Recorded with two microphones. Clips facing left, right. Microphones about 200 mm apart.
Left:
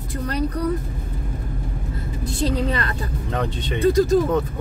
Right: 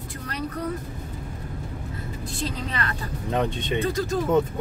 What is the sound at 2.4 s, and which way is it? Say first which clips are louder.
Speech: left 8 dB; 35° left (ahead or behind).